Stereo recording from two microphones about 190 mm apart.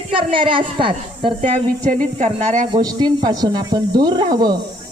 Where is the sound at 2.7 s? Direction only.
20° right (ahead or behind).